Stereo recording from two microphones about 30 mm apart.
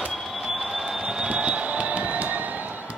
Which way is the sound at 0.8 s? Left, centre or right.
Centre.